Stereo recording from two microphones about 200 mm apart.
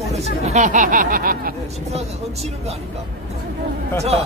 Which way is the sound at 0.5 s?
35° right (ahead or behind).